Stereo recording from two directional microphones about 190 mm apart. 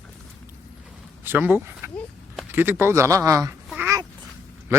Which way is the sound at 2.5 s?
10° right (ahead or behind).